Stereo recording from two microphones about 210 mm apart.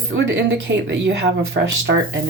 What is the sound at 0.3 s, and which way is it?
Speech, 60° right (ahead or behind).